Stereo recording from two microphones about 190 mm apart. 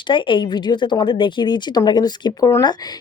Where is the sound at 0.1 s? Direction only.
25° left (ahead or behind).